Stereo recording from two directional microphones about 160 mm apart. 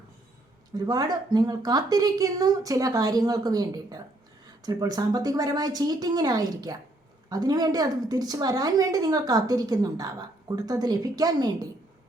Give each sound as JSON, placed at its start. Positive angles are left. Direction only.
{"t": 0.7, "sound": "a woman's voice", "side_deg": -25}